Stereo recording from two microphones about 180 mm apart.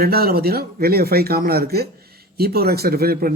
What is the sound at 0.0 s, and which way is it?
Speech, 60° right (ahead or behind).